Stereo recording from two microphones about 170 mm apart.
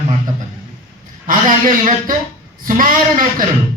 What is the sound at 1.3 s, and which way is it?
A woman's voice, 50° right (ahead or behind).